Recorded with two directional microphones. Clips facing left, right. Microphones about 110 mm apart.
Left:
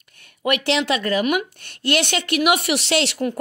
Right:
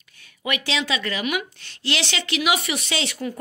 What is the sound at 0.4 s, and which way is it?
Speech, 60° left (ahead or behind).